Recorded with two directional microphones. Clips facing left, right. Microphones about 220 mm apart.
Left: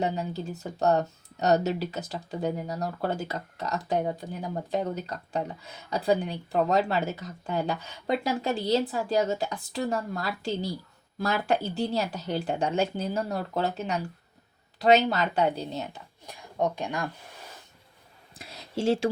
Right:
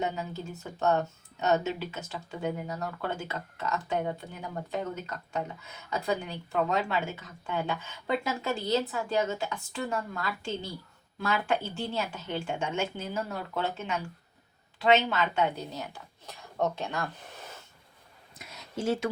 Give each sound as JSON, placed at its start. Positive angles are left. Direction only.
{"t": 0.0, "sound": "speech", "side_deg": 35}
{"t": 16.2, "sound": "speech", "side_deg": 15}
{"t": 18.3, "sound": "a sound", "side_deg": 30}